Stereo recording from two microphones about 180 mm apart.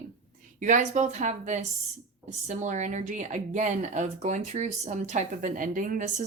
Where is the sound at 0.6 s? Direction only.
45° right (ahead or behind).